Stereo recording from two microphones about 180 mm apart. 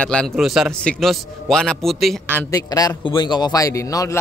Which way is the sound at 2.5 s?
20° left (ahead or behind).